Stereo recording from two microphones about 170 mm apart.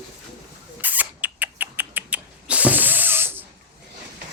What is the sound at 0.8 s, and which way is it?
Rodents, 10° right (ahead or behind).